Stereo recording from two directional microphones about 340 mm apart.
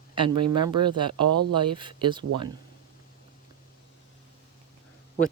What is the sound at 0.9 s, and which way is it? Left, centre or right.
Speech, centre.